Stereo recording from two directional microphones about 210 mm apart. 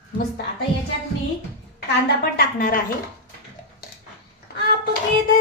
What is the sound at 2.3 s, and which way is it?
Speech, 45° left (ahead or behind).